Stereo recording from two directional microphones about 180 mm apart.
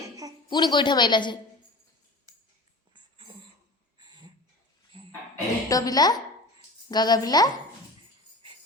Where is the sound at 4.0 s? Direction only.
25° right (ahead or behind).